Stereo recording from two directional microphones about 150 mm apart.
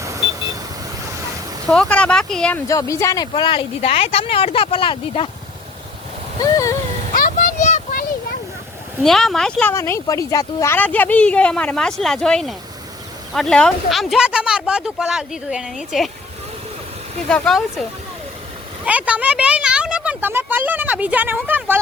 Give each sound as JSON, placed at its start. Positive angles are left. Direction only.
{"t": 0.0, "sound": "vehicle", "side_deg": -20}
{"t": 1.6, "sound": "speech", "side_deg": 5}
{"t": 2.6, "sound": "speech", "side_deg": 20}
{"t": 6.4, "sound": "a sound", "side_deg": 25}
{"t": 7.2, "sound": "a sound", "side_deg": 65}
{"t": 9.0, "sound": "speech", "side_deg": 0}
{"t": 17.2, "sound": "speech", "side_deg": 5}
{"t": 18.9, "sound": "speech", "side_deg": -10}